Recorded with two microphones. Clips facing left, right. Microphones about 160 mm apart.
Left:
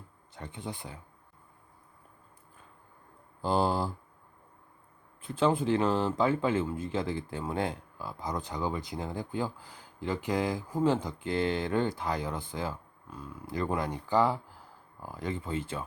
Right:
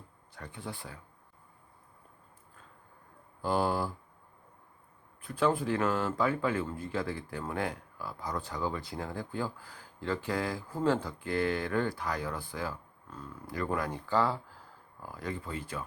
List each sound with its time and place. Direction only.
0.3 s speech: 20° left (ahead or behind)
3.4 s speech: 25° left (ahead or behind)
5.2 s speech: 25° left (ahead or behind)
13.1 s speech: 10° left (ahead or behind)
13.5 s speech: 25° left (ahead or behind)